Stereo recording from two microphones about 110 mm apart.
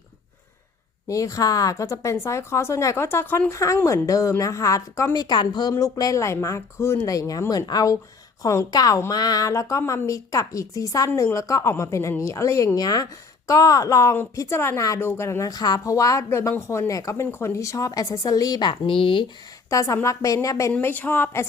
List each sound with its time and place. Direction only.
1.0 s speech: 30° left (ahead or behind); by 19.2 s 50° left (ahead or behind)
19.7 s speech: 30° left (ahead or behind)
20.7 s speech: 15° left (ahead or behind)